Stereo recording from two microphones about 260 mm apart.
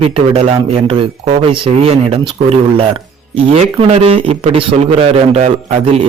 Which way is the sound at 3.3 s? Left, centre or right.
Right.